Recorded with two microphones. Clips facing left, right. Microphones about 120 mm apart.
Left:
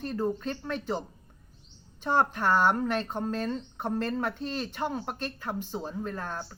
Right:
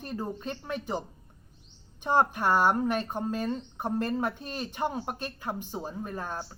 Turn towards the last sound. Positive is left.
turn(degrees=-15)  # may be behind; listen again after turning